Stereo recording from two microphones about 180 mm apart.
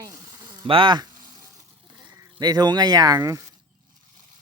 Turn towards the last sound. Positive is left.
turn(degrees=-20)  # may be behind; listen again after turning